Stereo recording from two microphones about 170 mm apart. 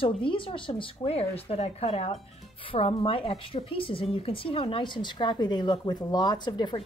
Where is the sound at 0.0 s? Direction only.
30° left (ahead or behind).